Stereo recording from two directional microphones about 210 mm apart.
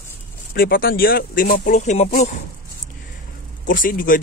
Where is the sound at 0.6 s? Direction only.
45° left (ahead or behind).